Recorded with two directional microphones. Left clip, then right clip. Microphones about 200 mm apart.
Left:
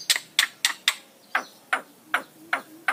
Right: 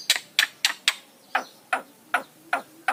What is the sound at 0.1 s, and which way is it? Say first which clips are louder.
Tick-tock: right 1 dB; 15° right (ahead or behind).